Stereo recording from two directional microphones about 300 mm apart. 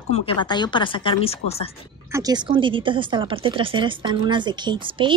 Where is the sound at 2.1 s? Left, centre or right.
Centre.